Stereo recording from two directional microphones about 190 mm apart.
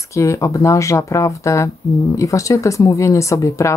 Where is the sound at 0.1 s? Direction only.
15° left (ahead or behind).